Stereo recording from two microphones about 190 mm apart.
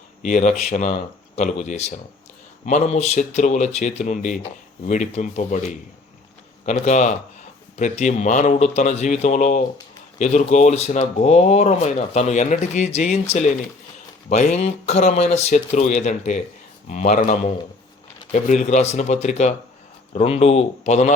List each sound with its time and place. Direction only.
0.2 s speech: 40° left (ahead or behind)
14.3 s speech: 35° left (ahead or behind)